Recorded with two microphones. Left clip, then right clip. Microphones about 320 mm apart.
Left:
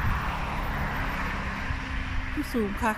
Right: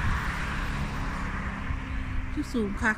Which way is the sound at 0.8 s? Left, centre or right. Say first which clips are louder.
Left 4 dB; left.